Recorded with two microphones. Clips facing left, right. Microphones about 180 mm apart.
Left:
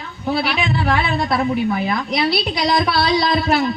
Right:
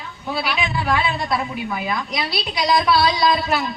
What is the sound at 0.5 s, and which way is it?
A woman's voice, 60° left (ahead or behind).